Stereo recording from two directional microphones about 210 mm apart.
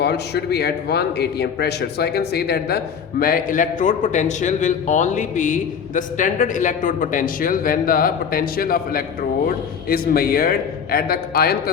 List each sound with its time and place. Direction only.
0.0 s a man's voice: 50° left (ahead or behind)